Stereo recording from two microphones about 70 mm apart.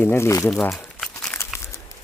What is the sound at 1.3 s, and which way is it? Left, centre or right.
Crumpling, left.